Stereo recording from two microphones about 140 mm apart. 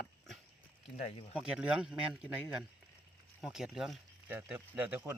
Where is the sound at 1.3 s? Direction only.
5° right (ahead or behind).